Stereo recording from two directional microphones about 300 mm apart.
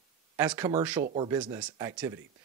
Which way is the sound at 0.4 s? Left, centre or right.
Centre.